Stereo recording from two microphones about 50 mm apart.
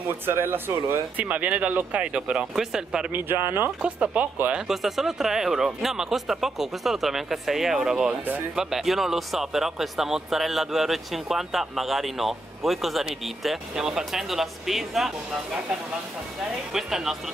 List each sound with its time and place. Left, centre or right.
0.3 s speech: right
1.1 s speech: right
2.5 s speech: centre
3.1 s speech: right
3.8 s speech: right
4.6 s speech: centre
16.7 s speech: centre